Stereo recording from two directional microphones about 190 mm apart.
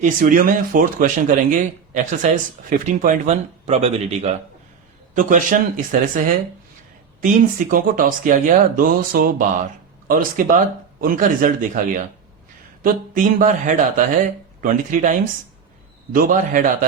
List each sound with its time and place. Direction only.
0.0 s speech: 45° right (ahead or behind)
7.7 s speech: 45° right (ahead or behind)
16.1 s speech: 45° right (ahead or behind)